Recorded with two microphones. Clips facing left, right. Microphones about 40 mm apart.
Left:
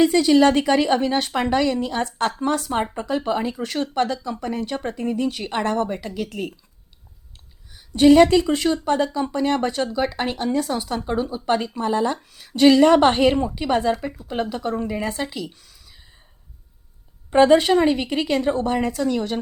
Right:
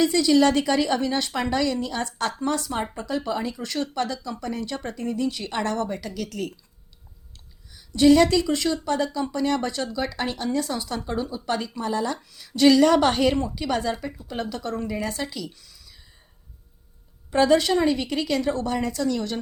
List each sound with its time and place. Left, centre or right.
0.0 s speech: left
7.7 s speech: left
17.3 s speech: left